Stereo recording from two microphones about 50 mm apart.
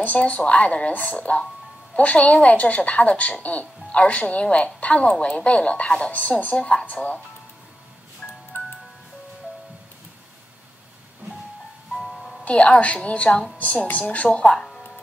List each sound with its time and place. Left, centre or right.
0.0 s speech: left
8.2 s music: centre
11.9 s music: centre
12.4 s speech: left
14.4 s speech: centre